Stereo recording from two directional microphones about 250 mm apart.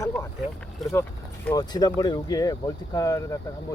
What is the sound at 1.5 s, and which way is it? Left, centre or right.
Speech, centre.